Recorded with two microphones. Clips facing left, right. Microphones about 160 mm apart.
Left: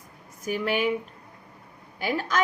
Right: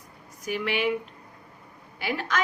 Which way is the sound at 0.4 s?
40° left (ahead or behind).